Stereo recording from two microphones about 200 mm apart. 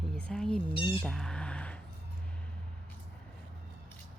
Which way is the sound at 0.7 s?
25° left (ahead or behind).